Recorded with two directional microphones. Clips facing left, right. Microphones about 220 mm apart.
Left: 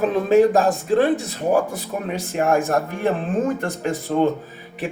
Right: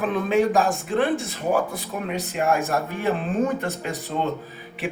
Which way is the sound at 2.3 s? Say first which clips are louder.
Left 4 dB; 45° left (ahead or behind).